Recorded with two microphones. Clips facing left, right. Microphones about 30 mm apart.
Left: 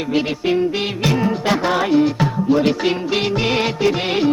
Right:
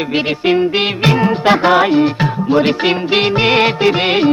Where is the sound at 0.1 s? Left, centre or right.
Right.